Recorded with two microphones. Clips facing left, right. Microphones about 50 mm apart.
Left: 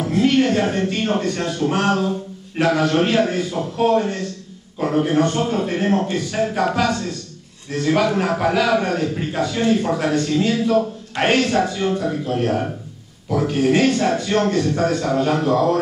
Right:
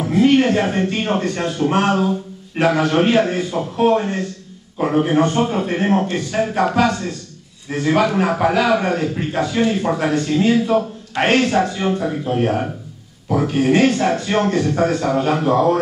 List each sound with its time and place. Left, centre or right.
0.0 s speech: centre